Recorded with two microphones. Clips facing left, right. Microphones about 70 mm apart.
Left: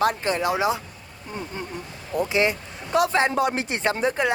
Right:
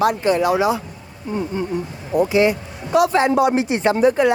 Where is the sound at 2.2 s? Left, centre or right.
Right.